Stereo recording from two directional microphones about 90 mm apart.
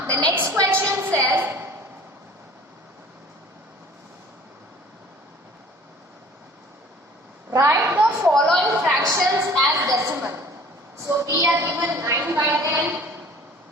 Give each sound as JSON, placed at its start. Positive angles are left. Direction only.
{"t": 0.3, "sound": "a sound", "side_deg": -35}
{"t": 7.5, "sound": "a woman's voice", "side_deg": -30}
{"t": 8.3, "sound": "a woman's voice", "side_deg": 0}
{"t": 9.0, "sound": "a woman's voice", "side_deg": -35}